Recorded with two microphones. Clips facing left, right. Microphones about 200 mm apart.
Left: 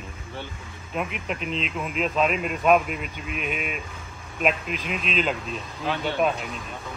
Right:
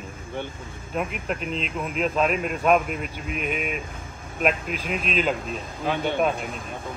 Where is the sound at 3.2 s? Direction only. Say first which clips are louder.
Right 2 dB; 45° right (ahead or behind).